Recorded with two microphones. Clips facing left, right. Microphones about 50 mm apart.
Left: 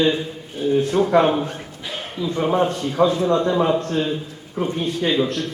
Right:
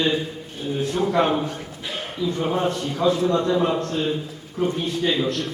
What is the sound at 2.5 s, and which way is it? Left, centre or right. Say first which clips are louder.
A man's voice: left 4 dB; left.